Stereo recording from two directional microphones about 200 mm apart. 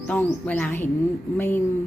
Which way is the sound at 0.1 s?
10° left (ahead or behind).